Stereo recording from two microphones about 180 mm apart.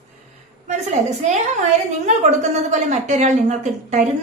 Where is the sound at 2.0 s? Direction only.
40° right (ahead or behind).